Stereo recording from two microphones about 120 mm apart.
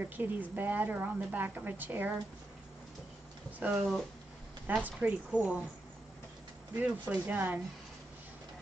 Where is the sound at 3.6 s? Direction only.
5° right (ahead or behind).